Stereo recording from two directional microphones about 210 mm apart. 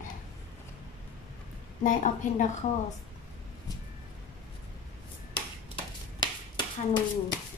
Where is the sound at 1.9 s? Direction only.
35° left (ahead or behind).